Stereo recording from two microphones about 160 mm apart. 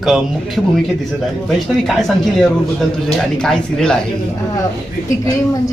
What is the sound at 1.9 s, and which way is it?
Speech, centre (ahead or behind).